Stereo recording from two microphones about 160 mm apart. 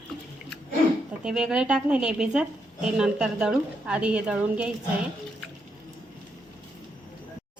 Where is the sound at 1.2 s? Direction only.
5° right (ahead or behind).